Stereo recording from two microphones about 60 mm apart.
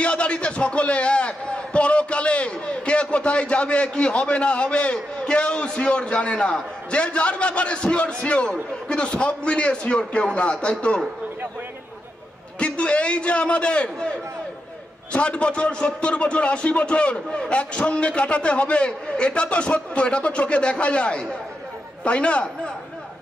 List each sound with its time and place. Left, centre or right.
0.0 s a man's voice: centre
12.5 s a man's voice: centre
15.1 s a man's voice: centre